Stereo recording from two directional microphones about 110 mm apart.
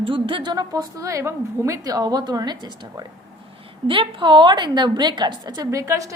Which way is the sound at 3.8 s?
55° right (ahead or behind).